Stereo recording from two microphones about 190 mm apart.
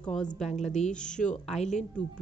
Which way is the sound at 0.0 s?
5° left (ahead or behind).